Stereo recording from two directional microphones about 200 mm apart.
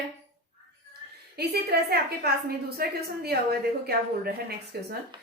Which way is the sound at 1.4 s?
55° right (ahead or behind).